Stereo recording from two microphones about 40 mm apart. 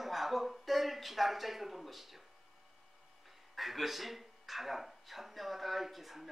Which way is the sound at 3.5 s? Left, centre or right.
Centre.